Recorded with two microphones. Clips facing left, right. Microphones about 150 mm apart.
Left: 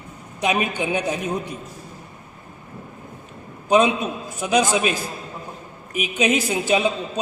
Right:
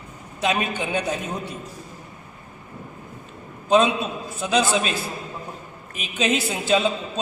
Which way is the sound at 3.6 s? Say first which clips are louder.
Left 1 dB; 15° left (ahead or behind).